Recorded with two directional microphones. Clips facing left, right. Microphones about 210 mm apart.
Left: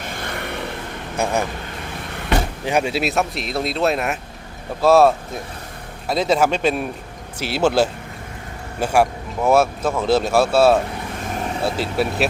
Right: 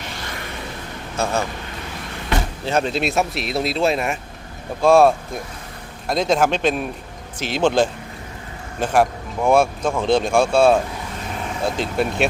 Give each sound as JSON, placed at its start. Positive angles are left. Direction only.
{"t": 0.0, "sound": "a sound", "side_deg": 55}
{"t": 1.1, "sound": "speech", "side_deg": 15}
{"t": 2.6, "sound": "a man's voice", "side_deg": 10}